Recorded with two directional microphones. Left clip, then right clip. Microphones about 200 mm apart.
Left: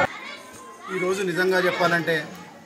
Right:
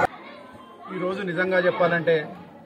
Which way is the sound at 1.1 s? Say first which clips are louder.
Left 2 dB; 20° right (ahead or behind).